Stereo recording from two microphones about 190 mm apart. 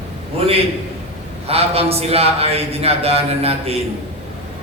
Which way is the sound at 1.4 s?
30° right (ahead or behind).